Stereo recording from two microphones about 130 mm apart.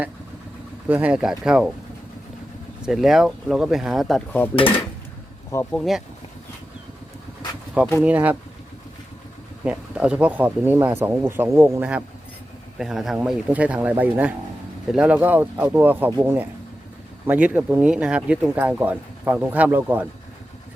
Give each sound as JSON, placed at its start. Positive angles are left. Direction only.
{"t": 0.9, "sound": "speech", "side_deg": -10}
{"t": 2.8, "sound": "speech", "side_deg": 0}
{"t": 5.7, "sound": "speech", "side_deg": 0}
{"t": 8.0, "sound": "speech", "side_deg": -10}
{"t": 9.6, "sound": "speech", "side_deg": -10}